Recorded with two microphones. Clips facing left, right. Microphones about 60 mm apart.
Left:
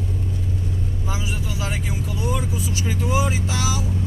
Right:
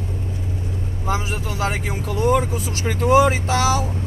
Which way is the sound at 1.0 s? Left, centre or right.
Right.